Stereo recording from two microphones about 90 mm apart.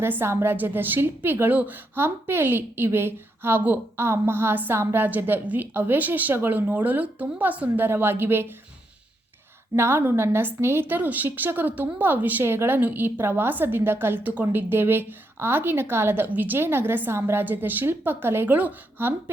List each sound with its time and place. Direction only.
0.0 s a woman's voice: 25° right (ahead or behind)
9.7 s a woman's voice: 25° right (ahead or behind)